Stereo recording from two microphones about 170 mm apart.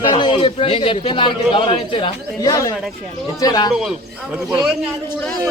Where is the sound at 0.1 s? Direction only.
30° left (ahead or behind).